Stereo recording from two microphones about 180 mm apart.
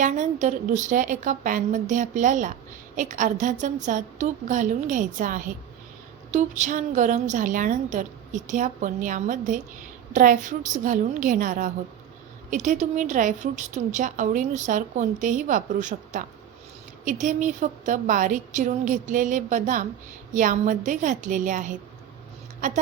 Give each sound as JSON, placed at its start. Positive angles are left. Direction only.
{"t": 0.0, "sound": "a woman's voice", "side_deg": -40}